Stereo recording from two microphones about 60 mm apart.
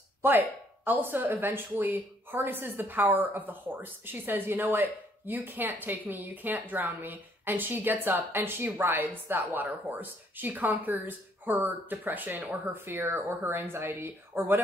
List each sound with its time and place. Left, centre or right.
0.2 s speech: right